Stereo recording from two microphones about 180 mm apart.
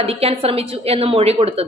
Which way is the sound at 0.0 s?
35° right (ahead or behind).